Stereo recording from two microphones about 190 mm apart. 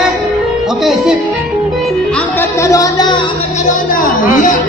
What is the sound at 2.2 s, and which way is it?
Music, 15° left (ahead or behind).